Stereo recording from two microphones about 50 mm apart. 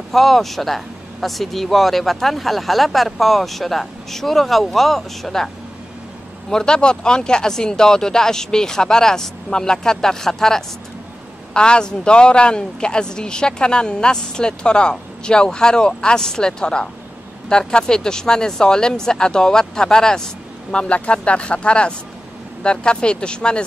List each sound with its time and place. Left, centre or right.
0.1 s speech: centre
6.5 s speech: centre
20.7 s speech: left